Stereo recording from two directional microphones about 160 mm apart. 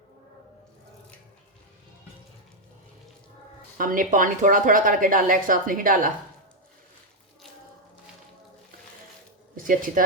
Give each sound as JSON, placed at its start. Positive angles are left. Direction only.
{"t": 3.8, "sound": "speech", "side_deg": -60}
{"t": 9.6, "sound": "speech", "side_deg": -60}